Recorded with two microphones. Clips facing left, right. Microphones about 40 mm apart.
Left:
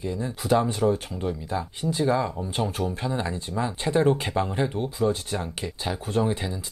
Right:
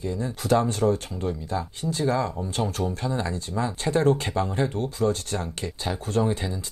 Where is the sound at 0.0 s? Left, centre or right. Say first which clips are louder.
Right 1 dB; left.